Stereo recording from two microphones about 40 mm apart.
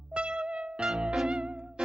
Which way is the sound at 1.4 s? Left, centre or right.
Right.